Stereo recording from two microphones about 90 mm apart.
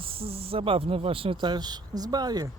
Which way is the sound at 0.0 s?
90° right.